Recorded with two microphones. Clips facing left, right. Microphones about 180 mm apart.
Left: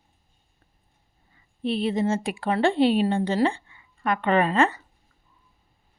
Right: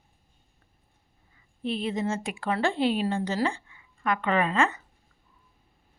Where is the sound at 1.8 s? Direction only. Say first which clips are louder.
Left 6 dB; 30° left (ahead or behind).